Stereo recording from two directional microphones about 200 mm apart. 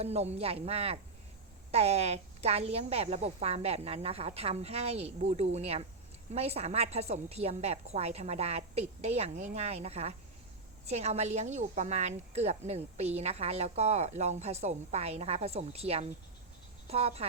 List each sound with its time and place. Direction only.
0.0 s a woman's voice: 30° right (ahead or behind)